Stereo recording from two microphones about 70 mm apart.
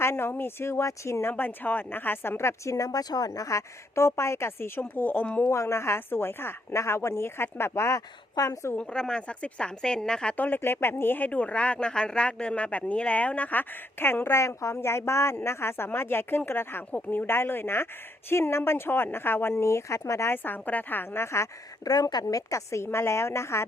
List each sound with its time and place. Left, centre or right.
0.0 s speech: left
1.3 s speech: left
2.7 s a woman's voice: left
5.4 s speech: left
8.7 s a woman's voice: centre
10.3 s speech: left
21.8 s a woman's voice: left